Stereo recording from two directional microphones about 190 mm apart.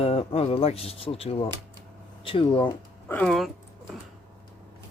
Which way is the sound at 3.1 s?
5° left (ahead or behind).